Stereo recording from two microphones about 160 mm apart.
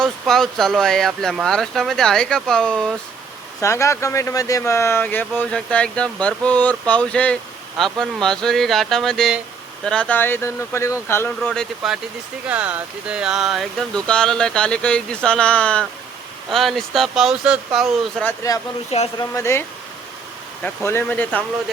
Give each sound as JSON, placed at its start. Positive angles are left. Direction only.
{"t": 0.0, "sound": "speech", "side_deg": 0}
{"t": 3.6, "sound": "speech", "side_deg": 20}
{"t": 11.3, "sound": "speech", "side_deg": 5}
{"t": 17.7, "sound": "speech", "side_deg": 10}
{"t": 18.9, "sound": "speech", "side_deg": 40}
{"t": 19.3, "sound": "speech", "side_deg": 15}